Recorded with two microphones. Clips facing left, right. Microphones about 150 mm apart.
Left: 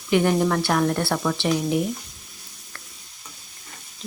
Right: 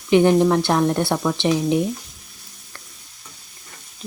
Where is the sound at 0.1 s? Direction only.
20° right (ahead or behind).